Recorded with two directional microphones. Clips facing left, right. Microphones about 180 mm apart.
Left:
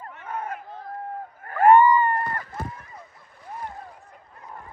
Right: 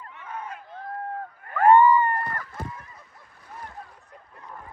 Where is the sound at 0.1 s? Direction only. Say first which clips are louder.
Left 5 dB; 50° left (ahead or behind).